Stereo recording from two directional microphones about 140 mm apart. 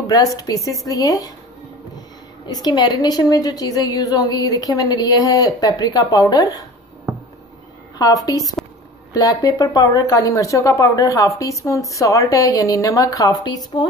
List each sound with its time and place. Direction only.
0.0 s speech: 25° left (ahead or behind)
2.4 s speech: 30° left (ahead or behind)
8.0 s speech: 25° left (ahead or behind)